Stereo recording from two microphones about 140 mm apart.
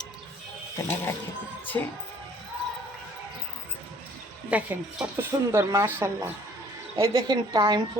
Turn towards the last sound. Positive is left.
turn(degrees=-30)  # may be behind; listen again after turning